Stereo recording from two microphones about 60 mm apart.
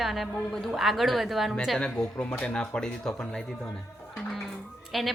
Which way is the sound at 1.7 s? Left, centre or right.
Centre.